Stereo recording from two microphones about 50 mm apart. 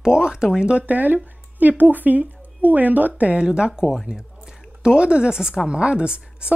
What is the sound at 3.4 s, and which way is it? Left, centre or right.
Speech, centre.